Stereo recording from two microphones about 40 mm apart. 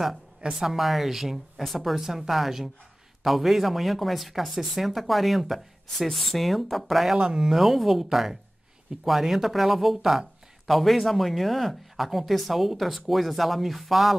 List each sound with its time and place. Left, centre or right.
0.5 s speech: centre
7.2 s speech: right
7.4 s speech: centre